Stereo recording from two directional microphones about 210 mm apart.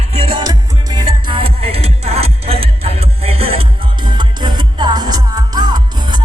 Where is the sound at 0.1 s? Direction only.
25° right (ahead or behind).